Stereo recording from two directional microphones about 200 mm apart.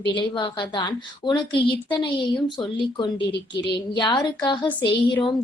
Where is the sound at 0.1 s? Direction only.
25° left (ahead or behind).